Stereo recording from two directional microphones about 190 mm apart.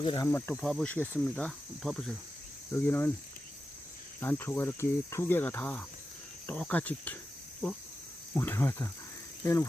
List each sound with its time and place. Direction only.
0.0 s speech: 25° left (ahead or behind)
0.3 s cricket: 10° left (ahead or behind)
4.2 s cricket: 10° left (ahead or behind)
8.4 s cricket: 10° left (ahead or behind)
9.4 s speech: 15° left (ahead or behind)